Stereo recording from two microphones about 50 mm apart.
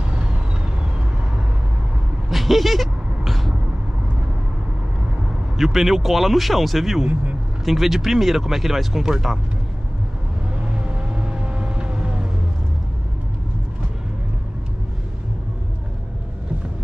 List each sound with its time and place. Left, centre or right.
0.0 s vehicle: centre
2.2 s vehicle: centre
5.6 s speech: centre
10.6 s vehicle: right